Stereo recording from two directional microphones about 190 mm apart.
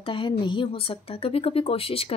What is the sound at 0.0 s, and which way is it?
Speech, 25° left (ahead or behind).